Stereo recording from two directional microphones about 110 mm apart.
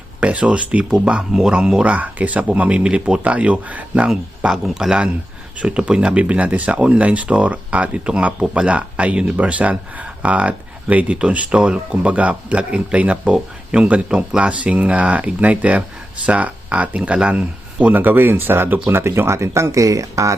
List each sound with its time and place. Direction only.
0.2 s speech: 10° right (ahead or behind); by 20.3 s 30° right (ahead or behind)